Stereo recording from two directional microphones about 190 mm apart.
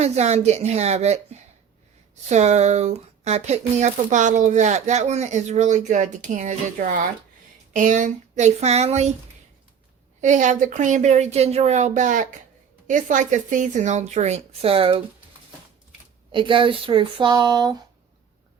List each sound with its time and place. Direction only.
0.0 s speech: 35° right (ahead or behind)
10.2 s speech: 40° right (ahead or behind)
16.3 s speech: 25° right (ahead or behind)